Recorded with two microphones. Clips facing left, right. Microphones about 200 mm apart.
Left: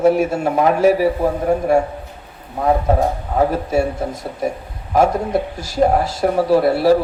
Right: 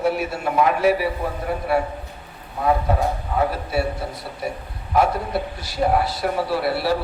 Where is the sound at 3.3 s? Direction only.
45° left (ahead or behind).